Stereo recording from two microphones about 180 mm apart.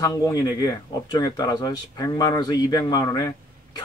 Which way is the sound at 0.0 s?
20° left (ahead or behind).